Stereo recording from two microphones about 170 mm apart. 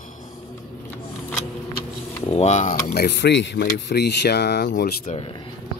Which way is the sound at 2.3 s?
45° left (ahead or behind).